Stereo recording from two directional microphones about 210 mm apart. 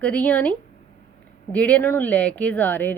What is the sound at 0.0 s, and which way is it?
Speech, 5° left (ahead or behind).